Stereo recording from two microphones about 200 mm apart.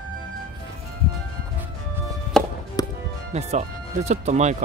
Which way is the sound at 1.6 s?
10° right (ahead or behind).